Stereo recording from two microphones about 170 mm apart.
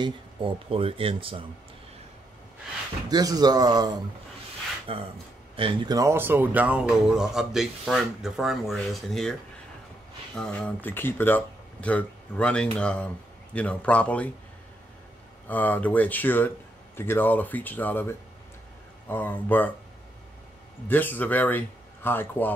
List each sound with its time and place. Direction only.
0.0 s speech: 30° right (ahead or behind)
3.1 s speech: 25° right (ahead or behind)
4.9 s speech: 35° right (ahead or behind)
5.6 s speech: 20° right (ahead or behind); by 9.3 s centre (ahead or behind)
10.3 s speech: 5° left (ahead or behind)
15.4 s speech: 10° left (ahead or behind)
20.9 s speech: 10° left (ahead or behind)